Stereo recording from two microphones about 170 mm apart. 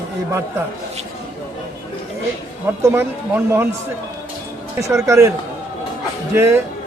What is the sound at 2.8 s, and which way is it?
Speech, 15° right (ahead or behind).